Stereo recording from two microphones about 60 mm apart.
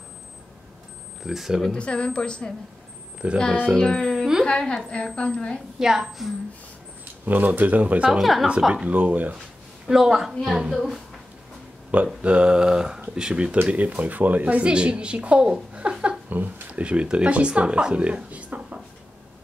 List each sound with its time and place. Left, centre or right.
1.2 s speech: centre
1.7 s a woman's voice: centre
3.2 s a woman's voice: right
3.7 s a woman's voice: centre
5.8 s a sound: centre
7.2 s a woman's voice: right
8.1 s speech: centre
8.5 s a sound: centre
8.8 s a woman's voice: right
9.8 s a sound: centre
10.7 s speech: centre
12.2 s a sound: centre
13.0 s a woman's voice: centre
16.3 s speech: right